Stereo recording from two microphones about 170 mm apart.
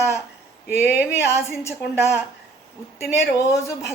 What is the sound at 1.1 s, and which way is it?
A woman's voice, 15° left (ahead or behind).